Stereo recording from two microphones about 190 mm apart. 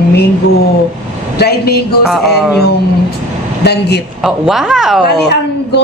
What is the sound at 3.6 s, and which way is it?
Speech, 60° left (ahead or behind).